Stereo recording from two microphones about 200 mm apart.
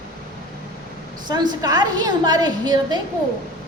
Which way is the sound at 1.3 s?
20° right (ahead or behind).